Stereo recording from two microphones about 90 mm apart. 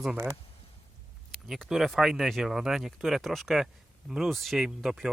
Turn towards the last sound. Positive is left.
turn(degrees=-5)  # may be behind; listen again after turning